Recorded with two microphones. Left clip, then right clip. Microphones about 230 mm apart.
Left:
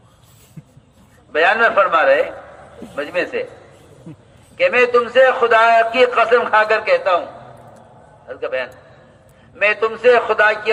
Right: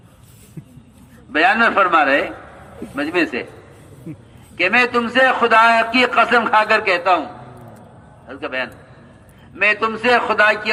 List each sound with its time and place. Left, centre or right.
1.3 s a man's voice: right
4.5 s a man's voice: right
8.3 s a man's voice: right